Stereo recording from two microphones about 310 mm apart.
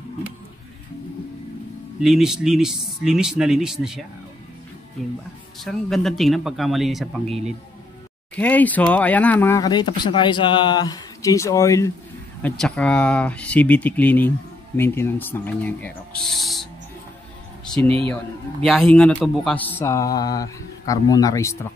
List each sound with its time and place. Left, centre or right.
2.0 s speech: centre
5.6 s speech: centre
7.2 s speech: centre
8.4 s speech: centre
18.0 s speech: centre